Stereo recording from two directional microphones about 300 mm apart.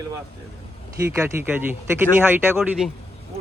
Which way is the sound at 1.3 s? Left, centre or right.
Centre.